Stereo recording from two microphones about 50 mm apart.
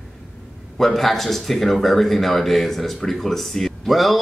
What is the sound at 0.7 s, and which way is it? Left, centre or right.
Speech, centre.